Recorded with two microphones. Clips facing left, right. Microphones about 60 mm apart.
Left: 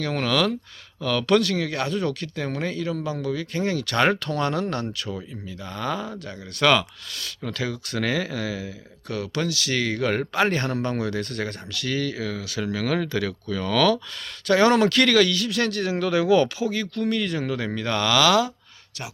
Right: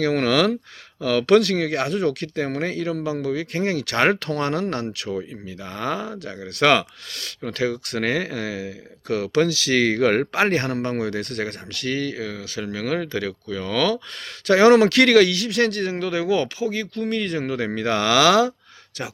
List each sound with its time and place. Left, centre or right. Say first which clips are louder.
0.0 s speech: right 4 dB; right
9.0 s speech: right 7 dB; right
10.5 s speech: right 2 dB; right
11.9 s speech: right 1 dB; right
14.4 s speech: right 4 dB; right
16.0 s speech: left 4 dB; right
17.7 s speech: right 3 dB; right